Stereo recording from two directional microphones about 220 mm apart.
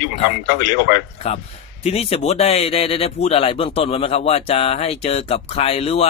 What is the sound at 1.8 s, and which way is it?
Speech, 25° left (ahead or behind).